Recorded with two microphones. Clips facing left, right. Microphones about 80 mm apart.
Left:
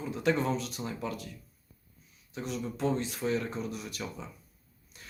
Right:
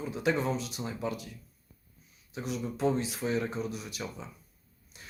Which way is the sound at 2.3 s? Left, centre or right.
Centre.